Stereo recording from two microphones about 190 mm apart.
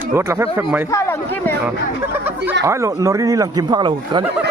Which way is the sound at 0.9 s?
15° left (ahead or behind).